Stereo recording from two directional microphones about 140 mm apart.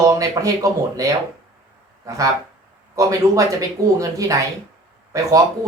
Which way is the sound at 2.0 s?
25° right (ahead or behind).